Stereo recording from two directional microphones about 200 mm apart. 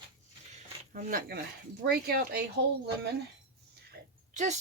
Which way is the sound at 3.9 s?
40° right (ahead or behind).